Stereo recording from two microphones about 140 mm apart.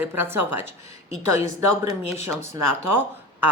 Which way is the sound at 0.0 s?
15° right (ahead or behind).